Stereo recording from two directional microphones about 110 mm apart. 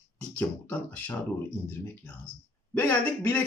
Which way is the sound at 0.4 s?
15° left (ahead or behind).